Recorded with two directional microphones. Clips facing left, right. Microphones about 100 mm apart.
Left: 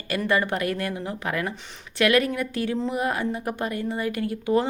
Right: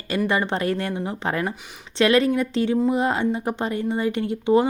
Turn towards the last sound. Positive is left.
turn(degrees=-25)  # may be behind; listen again after turning